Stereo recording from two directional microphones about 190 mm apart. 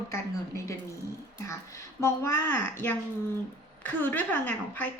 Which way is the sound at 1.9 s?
15° left (ahead or behind).